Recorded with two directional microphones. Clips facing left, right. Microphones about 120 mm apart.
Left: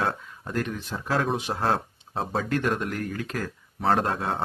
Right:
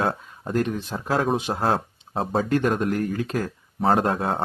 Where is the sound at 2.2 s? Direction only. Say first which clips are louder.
Right 4 dB; 35° right (ahead or behind).